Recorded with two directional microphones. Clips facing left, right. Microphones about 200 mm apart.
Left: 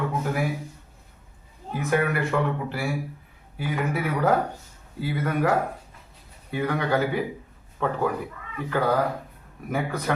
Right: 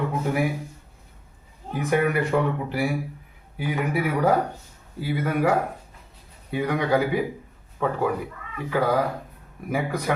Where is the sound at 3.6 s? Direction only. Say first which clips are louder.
Right 2 dB; 15° right (ahead or behind).